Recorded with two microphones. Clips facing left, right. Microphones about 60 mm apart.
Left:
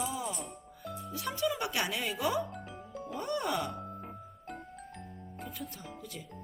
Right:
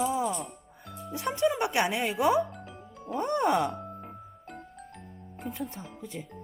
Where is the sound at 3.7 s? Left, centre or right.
Centre.